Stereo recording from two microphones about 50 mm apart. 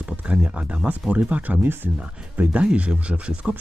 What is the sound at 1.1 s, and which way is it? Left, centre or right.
Speech, right.